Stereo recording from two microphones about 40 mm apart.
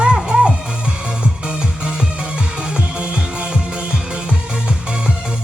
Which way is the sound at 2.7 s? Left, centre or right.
Right.